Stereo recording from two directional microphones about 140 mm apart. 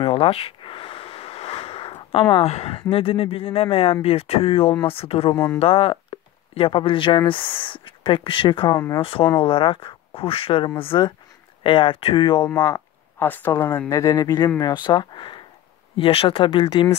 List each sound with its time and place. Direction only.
0.0 s speech: 45° left (ahead or behind)
5.3 s speech: 20° left (ahead or behind)
5.6 s speech: 40° left (ahead or behind)
8.7 s speech: 20° left (ahead or behind)
9.0 s speech: 40° left (ahead or behind)
13.2 s speech: 15° left (ahead or behind); by 16.9 s 40° left (ahead or behind)